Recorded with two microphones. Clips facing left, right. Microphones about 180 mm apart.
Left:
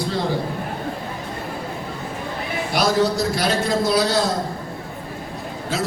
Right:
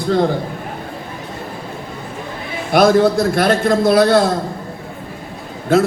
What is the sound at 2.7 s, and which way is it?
A man's voice, 55° right (ahead or behind).